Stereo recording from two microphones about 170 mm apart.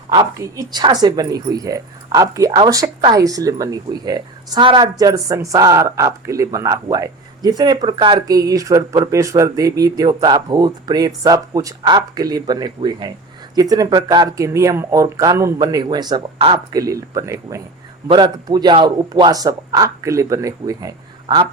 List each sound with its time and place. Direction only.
0.1 s speech: 20° right (ahead or behind)